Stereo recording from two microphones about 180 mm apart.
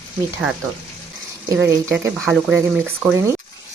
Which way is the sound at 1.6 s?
15° right (ahead or behind).